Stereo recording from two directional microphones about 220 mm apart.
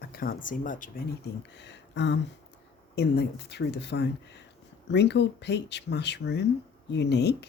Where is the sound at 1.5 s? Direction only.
50° left (ahead or behind).